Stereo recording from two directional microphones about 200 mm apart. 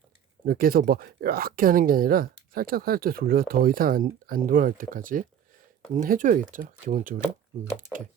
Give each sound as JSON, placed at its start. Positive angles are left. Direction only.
{"t": 0.4, "sound": "speech", "side_deg": -45}